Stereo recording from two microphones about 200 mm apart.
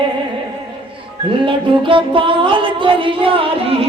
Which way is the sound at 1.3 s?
25° right (ahead or behind).